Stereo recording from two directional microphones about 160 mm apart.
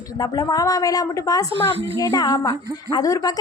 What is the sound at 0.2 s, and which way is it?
A woman's voice, 25° left (ahead or behind).